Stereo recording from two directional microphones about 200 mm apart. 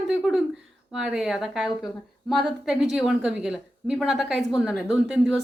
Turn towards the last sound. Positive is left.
turn(degrees=0)  # may be behind; listen again after turning